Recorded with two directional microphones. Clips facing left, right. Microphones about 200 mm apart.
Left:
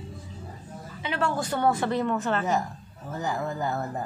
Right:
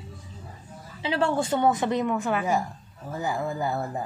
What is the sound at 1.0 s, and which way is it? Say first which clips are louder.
A woman's voice: right 4 dB; 30° right (ahead or behind).